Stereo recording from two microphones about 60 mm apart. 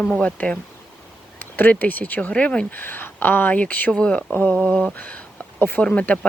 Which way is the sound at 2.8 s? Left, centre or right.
Left.